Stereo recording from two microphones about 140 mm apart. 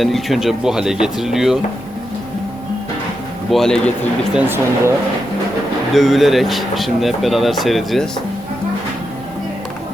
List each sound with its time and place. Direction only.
0.0 s speech: centre (ahead or behind)
3.5 s speech: 5° left (ahead or behind)
4.4 s speech: 15° right (ahead or behind)
5.9 s speech: centre (ahead or behind)